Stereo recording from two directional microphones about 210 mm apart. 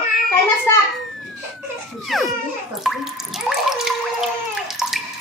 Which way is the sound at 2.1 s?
Centre (ahead or behind).